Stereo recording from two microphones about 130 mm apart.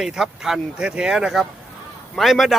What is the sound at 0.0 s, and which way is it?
Speech, 5° right (ahead or behind).